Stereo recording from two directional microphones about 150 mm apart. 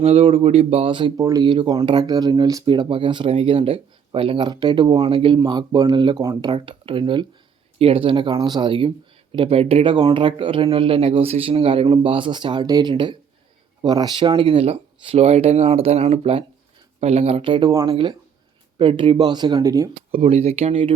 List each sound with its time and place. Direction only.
0.0 s speech: 40° right (ahead or behind)
1.1 s speech: 20° right (ahead or behind)
17.7 s speech: 20° right (ahead or behind)
17.9 s speech: 30° right (ahead or behind)
20.1 s speech: 40° right (ahead or behind)